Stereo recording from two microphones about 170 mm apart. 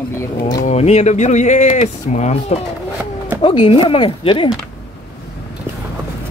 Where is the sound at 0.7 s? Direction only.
40° left (ahead or behind).